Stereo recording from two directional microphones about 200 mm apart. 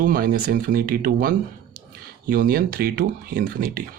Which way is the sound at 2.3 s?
50° right (ahead or behind).